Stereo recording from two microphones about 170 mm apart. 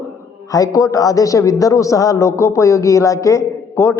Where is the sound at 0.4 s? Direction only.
20° left (ahead or behind).